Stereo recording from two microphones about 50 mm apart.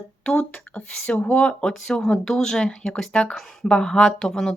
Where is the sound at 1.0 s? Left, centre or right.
Left.